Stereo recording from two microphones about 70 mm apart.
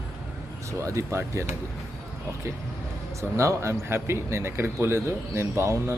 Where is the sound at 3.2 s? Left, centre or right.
Right.